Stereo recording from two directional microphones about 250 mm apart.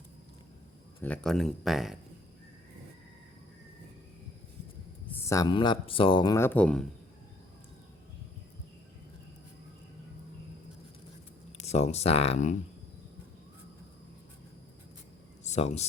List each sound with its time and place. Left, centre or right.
1.0 s speech: centre
5.1 s speech: centre
11.6 s speech: left
15.4 s speech: left